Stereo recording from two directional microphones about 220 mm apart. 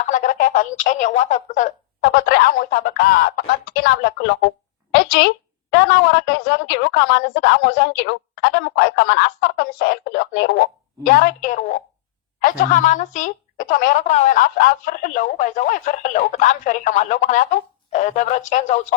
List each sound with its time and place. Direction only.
0.1 s a woman's voice: 35° left (ahead or behind)